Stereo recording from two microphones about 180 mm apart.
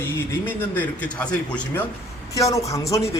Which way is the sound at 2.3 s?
15° left (ahead or behind).